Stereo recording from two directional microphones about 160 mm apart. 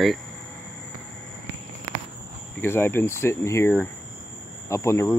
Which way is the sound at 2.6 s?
15° left (ahead or behind).